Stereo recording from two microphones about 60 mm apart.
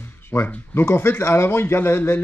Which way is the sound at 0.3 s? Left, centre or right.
Left.